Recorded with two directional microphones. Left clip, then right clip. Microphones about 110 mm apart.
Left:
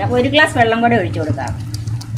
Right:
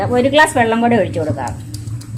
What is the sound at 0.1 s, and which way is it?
A woman's voice, 55° right (ahead or behind).